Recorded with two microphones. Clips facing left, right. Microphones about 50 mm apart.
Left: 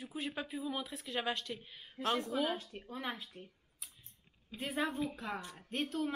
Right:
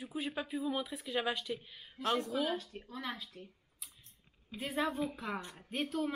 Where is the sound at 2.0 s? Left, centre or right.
Left.